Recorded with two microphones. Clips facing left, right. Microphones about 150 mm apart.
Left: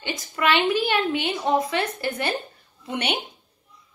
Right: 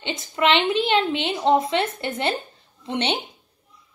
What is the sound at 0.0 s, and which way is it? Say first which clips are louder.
A woman's voice: right 2 dB; 20° right (ahead or behind).